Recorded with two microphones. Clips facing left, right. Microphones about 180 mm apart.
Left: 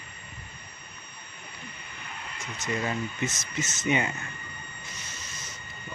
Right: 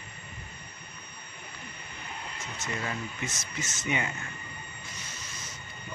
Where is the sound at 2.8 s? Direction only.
20° left (ahead or behind).